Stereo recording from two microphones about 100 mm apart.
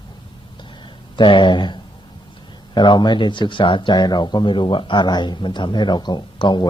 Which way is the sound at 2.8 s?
50° left (ahead or behind).